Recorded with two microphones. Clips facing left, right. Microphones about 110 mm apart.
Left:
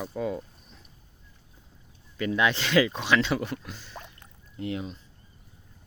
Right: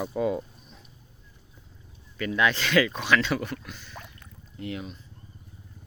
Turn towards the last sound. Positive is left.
turn(degrees=25)  # may be behind; listen again after turning